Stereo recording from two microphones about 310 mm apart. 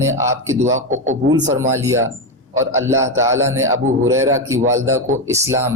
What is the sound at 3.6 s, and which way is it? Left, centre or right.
A man's voice, right.